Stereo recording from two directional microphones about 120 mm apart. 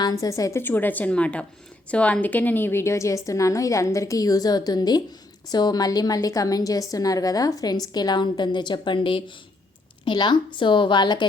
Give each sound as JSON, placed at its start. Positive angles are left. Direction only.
{"t": 0.0, "sound": "a woman's voice", "side_deg": 30}